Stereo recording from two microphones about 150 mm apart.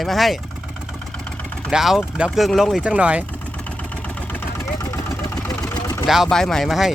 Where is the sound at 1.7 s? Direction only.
Centre (ahead or behind).